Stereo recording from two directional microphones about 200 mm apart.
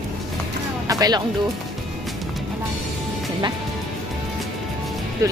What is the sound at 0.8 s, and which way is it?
Music, 20° right (ahead or behind).